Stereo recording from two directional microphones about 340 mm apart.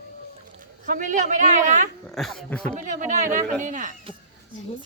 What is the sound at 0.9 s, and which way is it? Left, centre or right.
Speech, right.